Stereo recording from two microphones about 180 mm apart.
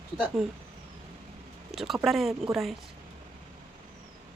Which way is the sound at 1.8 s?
Centre (ahead or behind).